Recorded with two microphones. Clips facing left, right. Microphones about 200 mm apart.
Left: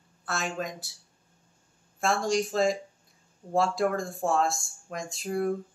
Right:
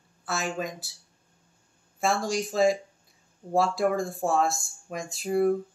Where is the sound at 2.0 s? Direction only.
5° right (ahead or behind).